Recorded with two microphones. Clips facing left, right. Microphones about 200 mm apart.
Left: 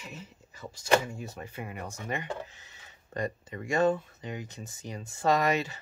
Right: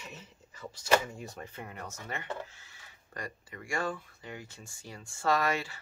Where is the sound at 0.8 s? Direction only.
5° left (ahead or behind).